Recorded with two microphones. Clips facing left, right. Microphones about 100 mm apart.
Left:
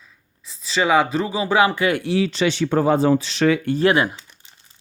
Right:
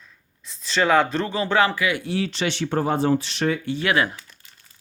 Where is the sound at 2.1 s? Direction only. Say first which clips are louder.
Left 5 dB; 90° left.